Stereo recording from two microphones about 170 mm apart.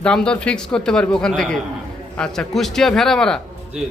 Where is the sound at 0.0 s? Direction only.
5° left (ahead or behind).